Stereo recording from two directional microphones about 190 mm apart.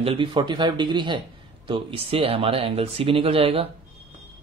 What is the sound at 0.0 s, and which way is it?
Speech, 30° right (ahead or behind).